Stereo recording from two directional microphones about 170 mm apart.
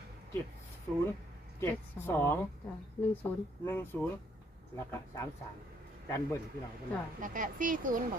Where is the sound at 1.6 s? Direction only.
15° left (ahead or behind).